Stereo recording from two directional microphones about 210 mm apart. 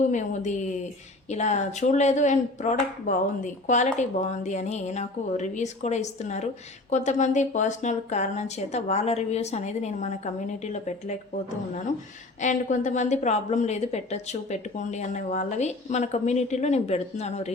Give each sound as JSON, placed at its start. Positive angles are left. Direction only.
{"t": 0.0, "sound": "a woman's voice", "side_deg": 35}
{"t": 12.4, "sound": "a woman's voice", "side_deg": 35}